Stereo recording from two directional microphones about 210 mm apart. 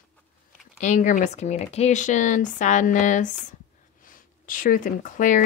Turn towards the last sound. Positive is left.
turn(degrees=40)  # may be behind; listen again after turning